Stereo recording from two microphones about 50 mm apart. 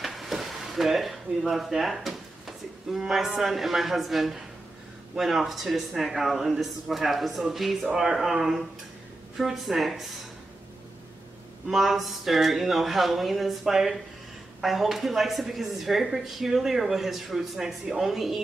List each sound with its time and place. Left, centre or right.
0.0 s a sound: centre
3.3 s speech: centre
11.6 s speech: centre